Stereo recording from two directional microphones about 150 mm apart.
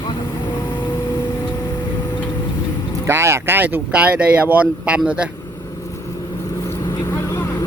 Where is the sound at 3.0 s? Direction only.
15° right (ahead or behind).